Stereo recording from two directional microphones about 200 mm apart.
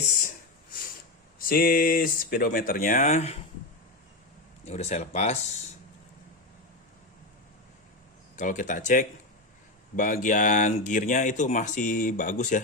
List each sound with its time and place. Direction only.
1.4 s speech: 45° left (ahead or behind)
4.6 s speech: 35° left (ahead or behind)
8.4 s speech: 40° left (ahead or behind)